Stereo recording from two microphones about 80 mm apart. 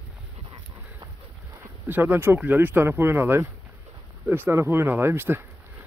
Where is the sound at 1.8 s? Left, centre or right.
Right.